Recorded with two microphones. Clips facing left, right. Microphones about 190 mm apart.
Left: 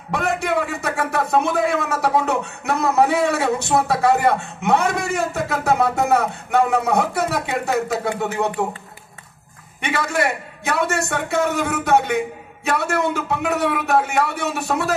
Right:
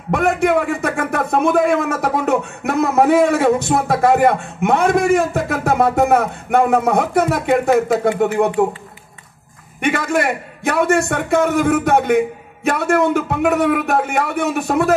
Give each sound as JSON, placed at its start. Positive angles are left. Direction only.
{"t": 0.1, "sound": "speech", "side_deg": -50}
{"t": 9.8, "sound": "speech", "side_deg": -50}